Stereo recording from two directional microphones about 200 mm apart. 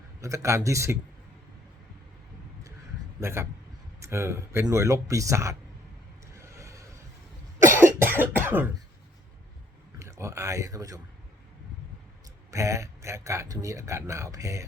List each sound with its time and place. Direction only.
0.2 s a man's voice: 15° right (ahead or behind)
3.2 s a man's voice: 15° right (ahead or behind)
6.3 s a sound: 15° right (ahead or behind)
7.8 s cough: 10° right (ahead or behind)
10.0 s speech: 15° right (ahead or behind)
12.5 s a man's voice: 15° right (ahead or behind)